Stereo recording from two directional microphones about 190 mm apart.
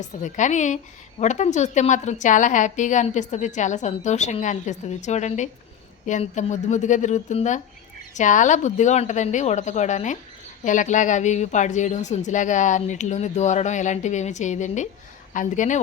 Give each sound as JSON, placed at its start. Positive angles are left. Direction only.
{"t": 0.2, "sound": "a woman's voice", "side_deg": 40}